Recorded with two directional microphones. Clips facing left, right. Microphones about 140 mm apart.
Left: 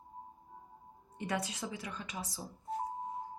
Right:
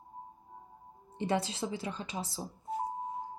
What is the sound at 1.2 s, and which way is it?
A woman's voice, 30° right (ahead or behind).